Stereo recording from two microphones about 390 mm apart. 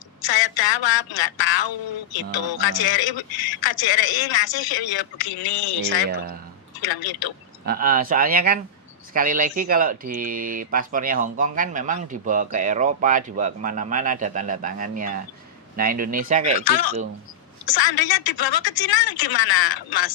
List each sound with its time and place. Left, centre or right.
0.3 s a woman's voice: left
6.7 s a woman's voice: left
7.6 s speech: right
17.7 s a woman's voice: left